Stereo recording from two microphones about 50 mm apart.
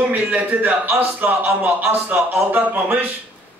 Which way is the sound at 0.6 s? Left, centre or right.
Right.